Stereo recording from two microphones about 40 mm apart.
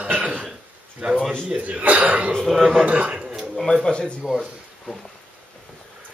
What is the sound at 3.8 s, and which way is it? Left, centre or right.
Speech, left.